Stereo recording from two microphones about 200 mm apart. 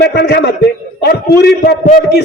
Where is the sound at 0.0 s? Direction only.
55° left (ahead or behind).